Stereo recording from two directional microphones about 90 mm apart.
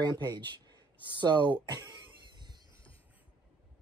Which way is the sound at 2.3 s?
55° right (ahead or behind).